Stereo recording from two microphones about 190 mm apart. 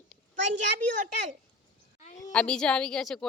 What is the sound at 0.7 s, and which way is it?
Speech, 40° right (ahead or behind).